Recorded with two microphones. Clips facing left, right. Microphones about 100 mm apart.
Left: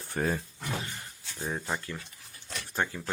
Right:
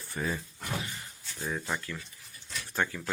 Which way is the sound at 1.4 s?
30° left (ahead or behind).